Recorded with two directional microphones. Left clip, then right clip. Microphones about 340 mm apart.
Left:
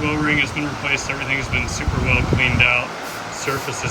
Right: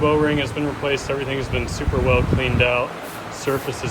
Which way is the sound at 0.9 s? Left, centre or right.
Right.